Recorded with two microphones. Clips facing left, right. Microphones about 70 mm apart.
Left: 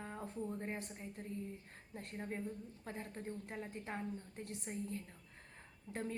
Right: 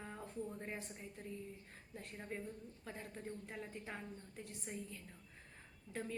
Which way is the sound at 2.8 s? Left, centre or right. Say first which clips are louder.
Left 2 dB; left.